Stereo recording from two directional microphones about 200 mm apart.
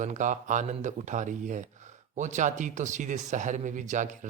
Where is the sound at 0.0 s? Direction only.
40° right (ahead or behind).